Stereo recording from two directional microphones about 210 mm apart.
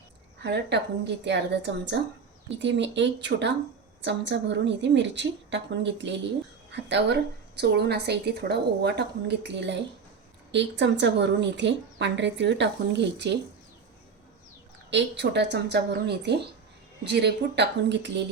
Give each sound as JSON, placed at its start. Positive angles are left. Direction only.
{"t": 0.4, "sound": "a woman's voice", "side_deg": -55}
{"t": 14.8, "sound": "a woman's voice", "side_deg": -55}